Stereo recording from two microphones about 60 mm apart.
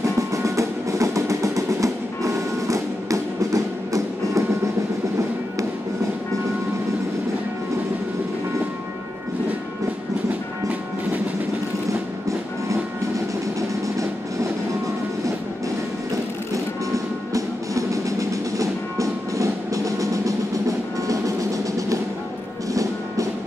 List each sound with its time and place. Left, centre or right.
0.0 s music: right
13.6 s music: right
16.5 s music: right